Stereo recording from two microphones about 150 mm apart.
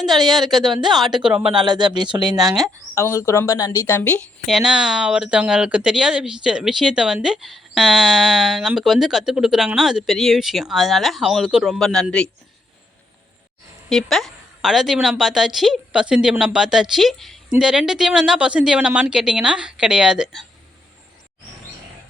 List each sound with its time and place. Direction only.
0.3 s speech: centre (ahead or behind)
1.6 s speech: 30° right (ahead or behind)
2.9 s a woman's voice: 20° left (ahead or behind)
4.5 s speech: 5° right (ahead or behind)
13.9 s speech: centre (ahead or behind)